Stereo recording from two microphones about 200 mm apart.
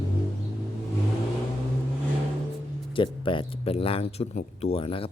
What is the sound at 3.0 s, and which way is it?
Speech, 25° left (ahead or behind).